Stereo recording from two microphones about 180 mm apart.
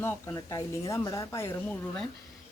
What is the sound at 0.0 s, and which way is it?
Speech, 15° left (ahead or behind).